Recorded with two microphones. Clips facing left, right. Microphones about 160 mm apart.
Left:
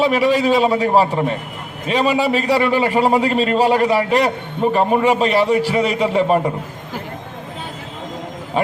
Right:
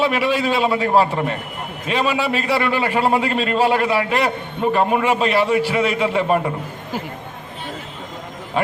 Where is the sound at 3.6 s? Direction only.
40° left (ahead or behind).